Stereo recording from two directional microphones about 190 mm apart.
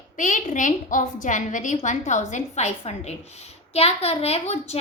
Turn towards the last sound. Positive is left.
turn(degrees=35)  # may be behind; listen again after turning